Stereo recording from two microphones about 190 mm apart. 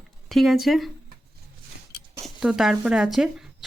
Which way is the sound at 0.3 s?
Centre (ahead or behind).